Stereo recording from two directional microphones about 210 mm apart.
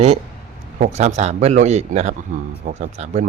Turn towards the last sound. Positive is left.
turn(degrees=-35)  # may be behind; listen again after turning